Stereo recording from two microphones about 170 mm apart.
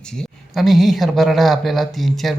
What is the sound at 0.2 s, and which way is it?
Speech, centre (ahead or behind).